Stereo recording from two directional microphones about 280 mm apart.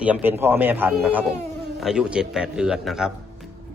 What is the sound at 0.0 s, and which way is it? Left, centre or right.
Speech, centre.